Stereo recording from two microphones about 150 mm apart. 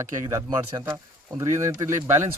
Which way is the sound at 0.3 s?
20° right (ahead or behind).